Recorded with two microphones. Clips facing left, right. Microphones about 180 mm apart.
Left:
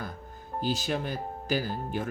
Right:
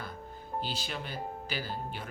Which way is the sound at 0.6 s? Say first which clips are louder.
Left 12 dB; 45° left (ahead or behind).